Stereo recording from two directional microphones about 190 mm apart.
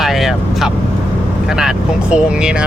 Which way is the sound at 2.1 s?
5° right (ahead or behind).